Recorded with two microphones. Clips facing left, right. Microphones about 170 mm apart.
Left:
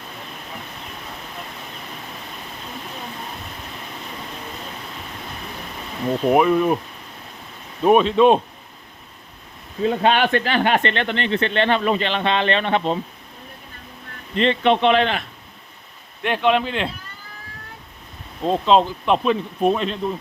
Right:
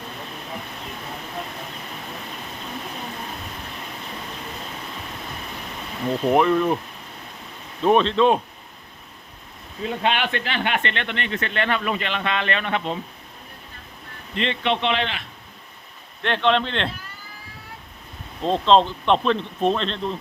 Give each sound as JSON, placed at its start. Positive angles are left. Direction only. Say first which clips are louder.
{"t": 6.2, "sound": "speech", "louder": "left 2 dB", "side_deg": 10}
{"t": 7.9, "sound": "speech", "louder": "left 3 dB", "side_deg": 10}
{"t": 9.8, "sound": "speech", "louder": "left 6 dB", "side_deg": 40}
{"t": 14.3, "sound": "speech", "louder": "left 6 dB", "side_deg": 40}
{"t": 16.2, "sound": "speech", "louder": "left 2 dB", "side_deg": 10}
{"t": 18.4, "sound": "speech", "louder": "left 1 dB", "side_deg": 5}